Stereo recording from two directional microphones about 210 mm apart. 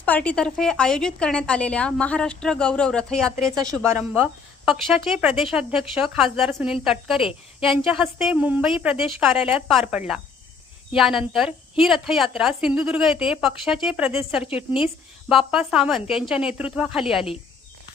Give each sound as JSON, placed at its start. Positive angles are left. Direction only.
{"t": 0.0, "sound": "a woman's voice", "side_deg": 5}
{"t": 3.6, "sound": "a woman's voice", "side_deg": -15}
{"t": 4.2, "sound": "a woman's voice", "side_deg": 0}
{"t": 14.4, "sound": "speech", "side_deg": 25}
{"t": 15.3, "sound": "a woman's voice", "side_deg": 0}